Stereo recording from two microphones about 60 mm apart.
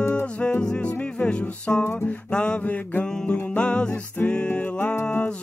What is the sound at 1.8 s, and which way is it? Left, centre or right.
Music, left.